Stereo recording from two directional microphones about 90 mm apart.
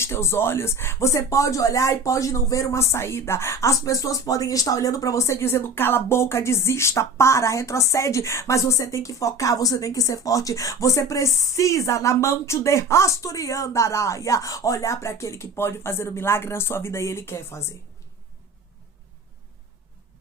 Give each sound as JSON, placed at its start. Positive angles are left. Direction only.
{"t": 0.0, "sound": "speech", "side_deg": 30}